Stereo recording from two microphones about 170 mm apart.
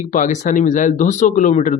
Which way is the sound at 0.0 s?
50° left (ahead or behind).